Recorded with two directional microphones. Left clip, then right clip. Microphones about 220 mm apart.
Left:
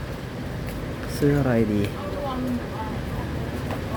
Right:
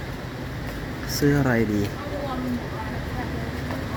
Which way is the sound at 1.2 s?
Centre (ahead or behind).